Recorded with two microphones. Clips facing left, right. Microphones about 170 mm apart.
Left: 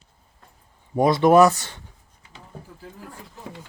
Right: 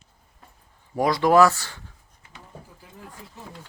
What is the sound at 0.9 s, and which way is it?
Speech, 25° left (ahead or behind).